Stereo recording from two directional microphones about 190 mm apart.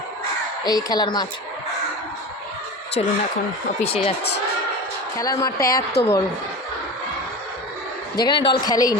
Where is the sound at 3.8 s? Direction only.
30° left (ahead or behind).